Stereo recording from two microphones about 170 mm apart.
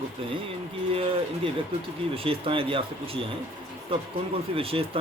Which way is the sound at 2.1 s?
35° right (ahead or behind).